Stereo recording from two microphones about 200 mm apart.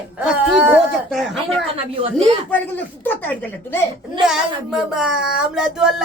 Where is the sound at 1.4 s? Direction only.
30° right (ahead or behind).